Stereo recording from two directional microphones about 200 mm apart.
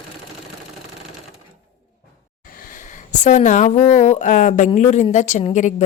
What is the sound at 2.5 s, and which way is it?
A woman's voice, 45° left (ahead or behind).